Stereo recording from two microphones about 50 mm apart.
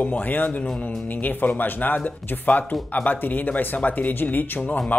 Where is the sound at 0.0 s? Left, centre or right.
Left.